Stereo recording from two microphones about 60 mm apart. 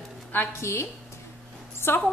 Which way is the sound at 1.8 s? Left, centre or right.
Left.